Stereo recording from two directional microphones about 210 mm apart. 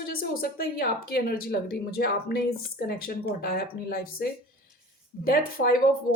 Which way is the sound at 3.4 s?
45° left (ahead or behind).